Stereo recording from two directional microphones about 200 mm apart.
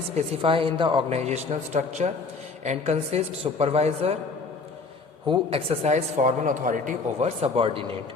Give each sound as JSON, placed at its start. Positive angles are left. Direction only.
{"t": 0.1, "sound": "speech", "side_deg": -30}
{"t": 5.3, "sound": "speech", "side_deg": -30}